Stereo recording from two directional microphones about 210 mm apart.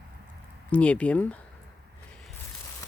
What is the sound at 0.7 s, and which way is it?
Speech, 5° left (ahead or behind).